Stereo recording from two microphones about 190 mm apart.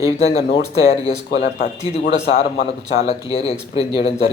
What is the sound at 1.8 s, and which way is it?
Speech, 35° left (ahead or behind).